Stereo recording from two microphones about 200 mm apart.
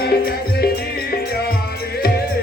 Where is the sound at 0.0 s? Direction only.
50° left (ahead or behind).